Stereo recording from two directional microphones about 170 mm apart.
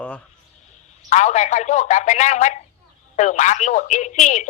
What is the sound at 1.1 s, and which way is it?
Speech, 45° left (ahead or behind).